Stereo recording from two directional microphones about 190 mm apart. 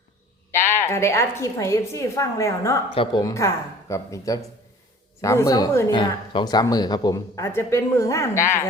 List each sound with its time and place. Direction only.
0.9 s speech: 15° left (ahead or behind)
2.9 s speech: 25° left (ahead or behind)